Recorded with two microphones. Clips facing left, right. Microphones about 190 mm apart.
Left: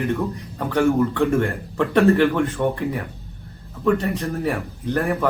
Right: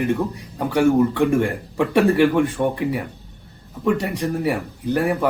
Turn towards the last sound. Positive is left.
turn(degrees=-10)  # may be behind; listen again after turning